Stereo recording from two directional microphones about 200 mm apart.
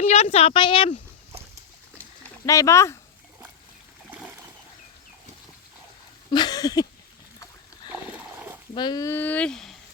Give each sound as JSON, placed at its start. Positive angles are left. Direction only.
{"t": 0.0, "sound": "speech", "side_deg": 30}
{"t": 2.5, "sound": "speech", "side_deg": 15}
{"t": 6.3, "sound": "speech", "side_deg": 20}
{"t": 7.9, "sound": "a sound", "side_deg": -10}
{"t": 8.7, "sound": "speech", "side_deg": 20}